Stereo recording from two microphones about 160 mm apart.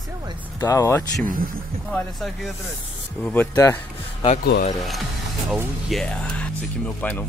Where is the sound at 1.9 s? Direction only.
5° left (ahead or behind).